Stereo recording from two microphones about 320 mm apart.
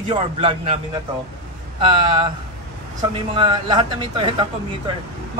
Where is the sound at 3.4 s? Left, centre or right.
Centre.